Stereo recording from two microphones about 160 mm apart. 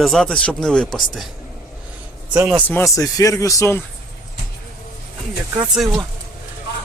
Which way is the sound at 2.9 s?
20° left (ahead or behind).